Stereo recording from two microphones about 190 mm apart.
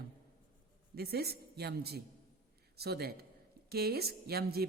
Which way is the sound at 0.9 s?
55° right (ahead or behind).